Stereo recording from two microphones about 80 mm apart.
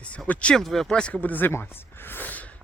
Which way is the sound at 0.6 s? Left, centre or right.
Centre.